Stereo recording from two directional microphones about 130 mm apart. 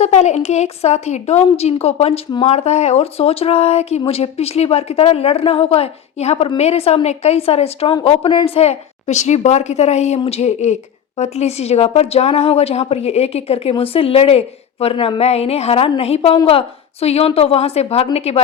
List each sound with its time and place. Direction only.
0.0 s a woman's voice: 60° left (ahead or behind)